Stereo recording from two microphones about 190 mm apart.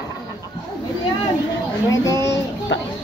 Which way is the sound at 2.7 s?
75° left (ahead or behind).